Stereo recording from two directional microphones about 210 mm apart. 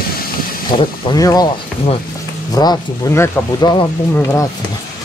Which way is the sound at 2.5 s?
20° left (ahead or behind).